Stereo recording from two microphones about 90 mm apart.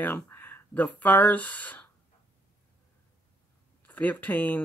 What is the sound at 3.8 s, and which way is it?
Speech, 15° left (ahead or behind).